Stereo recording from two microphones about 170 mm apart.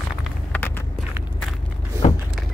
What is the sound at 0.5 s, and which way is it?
Vehicle, 10° left (ahead or behind).